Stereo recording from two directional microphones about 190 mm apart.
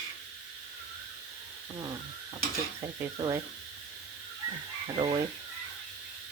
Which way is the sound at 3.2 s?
25° right (ahead or behind).